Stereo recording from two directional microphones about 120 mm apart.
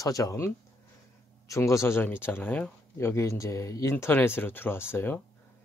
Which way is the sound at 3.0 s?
25° left (ahead or behind).